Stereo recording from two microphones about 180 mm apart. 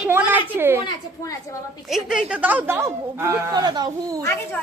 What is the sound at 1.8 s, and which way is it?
Speech, centre (ahead or behind).